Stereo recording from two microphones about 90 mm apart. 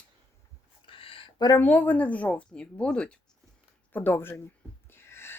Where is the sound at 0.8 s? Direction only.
85° left.